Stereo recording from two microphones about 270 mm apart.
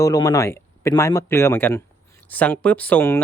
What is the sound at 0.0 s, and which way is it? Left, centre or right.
Speech, centre.